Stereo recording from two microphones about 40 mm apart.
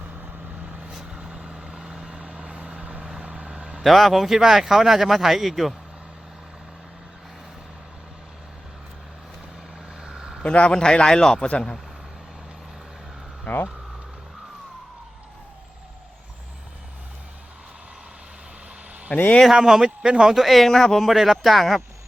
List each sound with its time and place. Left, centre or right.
0.2 s vehicle: right
0.9 s vehicle: centre
3.8 s speech: centre
10.0 s vehicle: centre
10.4 s a man's voice: left
11.4 s a man's voice: left
13.5 s speech: left
19.1 s speech: left
19.6 s speech: centre
20.3 s speech: centre
21.0 s speech: centre